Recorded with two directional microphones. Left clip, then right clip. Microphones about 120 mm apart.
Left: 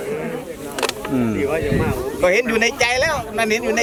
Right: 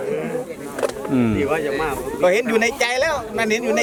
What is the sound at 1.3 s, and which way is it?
Speech, 45° right (ahead or behind).